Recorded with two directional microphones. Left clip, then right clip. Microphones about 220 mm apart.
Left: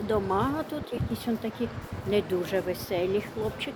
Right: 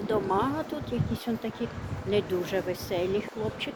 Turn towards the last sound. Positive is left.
turn(degrees=5)  # may be behind; listen again after turning